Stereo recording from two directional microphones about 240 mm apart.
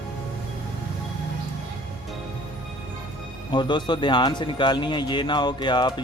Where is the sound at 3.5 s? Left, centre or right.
Centre.